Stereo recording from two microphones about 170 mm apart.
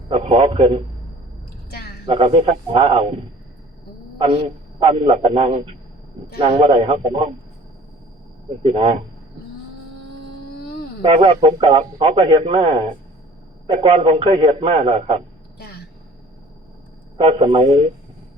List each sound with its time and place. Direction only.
0.1 s a man's voice: 35° right (ahead or behind)
2.0 s a man's voice: 35° right (ahead or behind)
4.2 s a man's voice: 30° right (ahead or behind)
8.6 s a man's voice: 35° right (ahead or behind)
11.0 s a man's voice: 30° right (ahead or behind)
15.5 s a sound: 65° left (ahead or behind)
17.2 s a man's voice: 35° right (ahead or behind)